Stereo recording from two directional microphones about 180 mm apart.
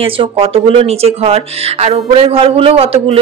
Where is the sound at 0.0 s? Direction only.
30° right (ahead or behind).